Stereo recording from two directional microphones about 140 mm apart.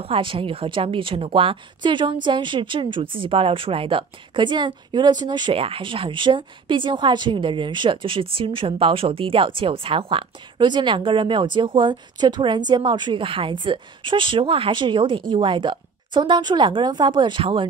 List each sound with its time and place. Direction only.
0.0 s a woman's voice: 40° right (ahead or behind)